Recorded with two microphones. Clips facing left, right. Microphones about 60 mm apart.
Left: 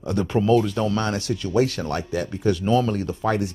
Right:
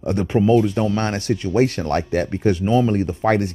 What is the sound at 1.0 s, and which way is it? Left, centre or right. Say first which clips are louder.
Speech: right 3 dB; right.